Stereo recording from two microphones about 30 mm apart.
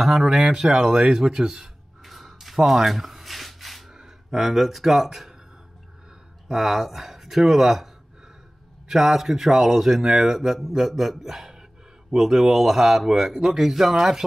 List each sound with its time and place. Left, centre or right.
0.0 s a man's voice: centre
1.1 s a sound: centre
3.9 s speech: centre
6.5 s a man's voice: centre